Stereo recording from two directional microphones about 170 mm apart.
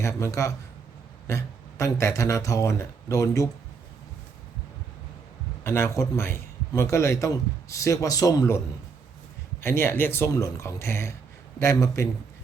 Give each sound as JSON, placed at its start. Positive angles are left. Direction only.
{"t": 0.0, "sound": "a man's voice", "side_deg": 15}
{"t": 5.6, "sound": "a man's voice", "side_deg": 15}